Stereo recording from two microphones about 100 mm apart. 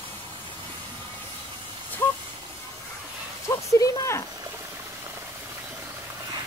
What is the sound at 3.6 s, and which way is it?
Speech, 30° left (ahead or behind).